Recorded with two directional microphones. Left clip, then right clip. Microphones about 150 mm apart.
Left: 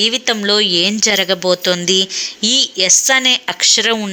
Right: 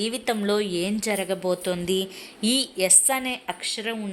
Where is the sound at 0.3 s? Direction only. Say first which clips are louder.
Left 11 dB; 15° left (ahead or behind).